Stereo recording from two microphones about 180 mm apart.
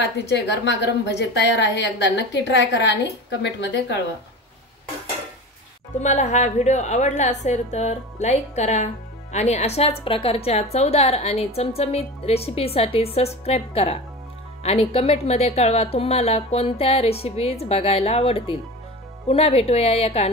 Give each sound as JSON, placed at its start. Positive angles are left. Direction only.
{"t": 0.0, "sound": "a woman's voice", "side_deg": 75}
{"t": 5.9, "sound": "a woman's voice", "side_deg": 40}